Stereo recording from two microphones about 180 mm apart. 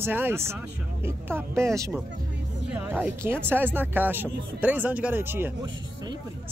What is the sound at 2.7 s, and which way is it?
Speech, 10° right (ahead or behind).